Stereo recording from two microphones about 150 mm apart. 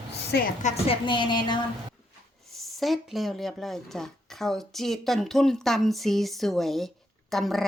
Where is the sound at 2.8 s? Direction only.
Centre (ahead or behind).